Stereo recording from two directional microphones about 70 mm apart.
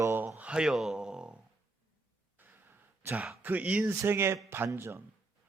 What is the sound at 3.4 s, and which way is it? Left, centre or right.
A man's voice, right.